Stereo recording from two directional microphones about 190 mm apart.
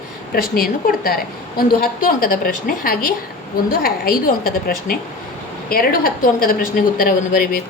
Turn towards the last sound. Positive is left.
turn(degrees=45)  # may be behind; listen again after turning